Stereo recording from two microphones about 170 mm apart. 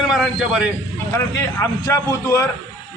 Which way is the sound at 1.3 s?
20° left (ahead or behind).